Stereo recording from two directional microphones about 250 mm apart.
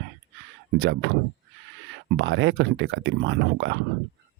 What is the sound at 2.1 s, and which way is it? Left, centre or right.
Speech, right.